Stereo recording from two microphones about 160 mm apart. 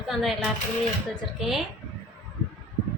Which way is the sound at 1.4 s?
Centre (ahead or behind).